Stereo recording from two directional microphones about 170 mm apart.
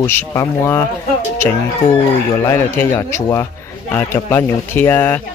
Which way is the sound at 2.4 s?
15° left (ahead or behind).